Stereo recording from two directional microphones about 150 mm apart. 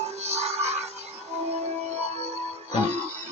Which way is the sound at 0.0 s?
45° right (ahead or behind).